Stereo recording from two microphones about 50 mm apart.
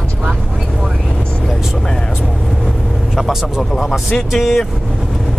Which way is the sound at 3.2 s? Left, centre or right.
Centre.